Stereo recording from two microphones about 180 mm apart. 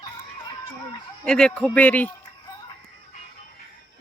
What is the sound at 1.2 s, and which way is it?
Speech, 5° left (ahead or behind).